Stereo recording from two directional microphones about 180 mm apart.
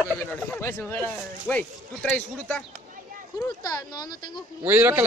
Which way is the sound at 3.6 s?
20° left (ahead or behind).